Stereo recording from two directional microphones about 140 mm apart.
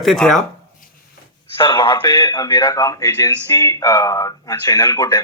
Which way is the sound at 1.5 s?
40° left (ahead or behind).